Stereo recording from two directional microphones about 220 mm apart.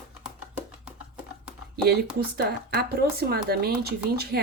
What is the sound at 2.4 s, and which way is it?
Speech, 45° right (ahead or behind).